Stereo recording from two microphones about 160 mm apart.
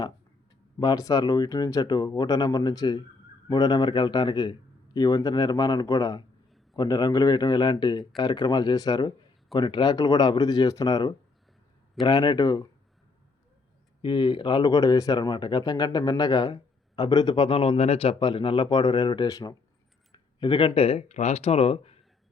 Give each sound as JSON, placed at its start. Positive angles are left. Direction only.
{"t": 0.8, "sound": "speech", "side_deg": 20}
{"t": 14.0, "sound": "speech", "side_deg": 30}